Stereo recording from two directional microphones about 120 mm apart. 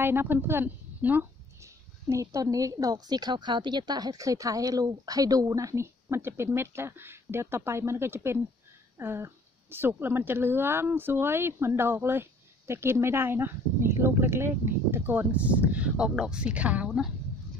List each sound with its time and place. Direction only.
0.0 s a woman's voice: 20° right (ahead or behind)